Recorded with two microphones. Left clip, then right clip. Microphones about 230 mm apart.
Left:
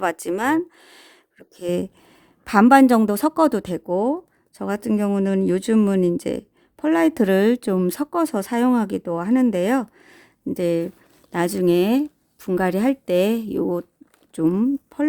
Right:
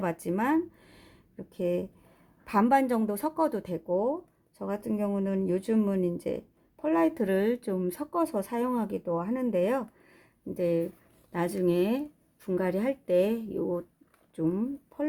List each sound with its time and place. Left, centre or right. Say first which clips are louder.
0.0 s speech: left 8 dB; left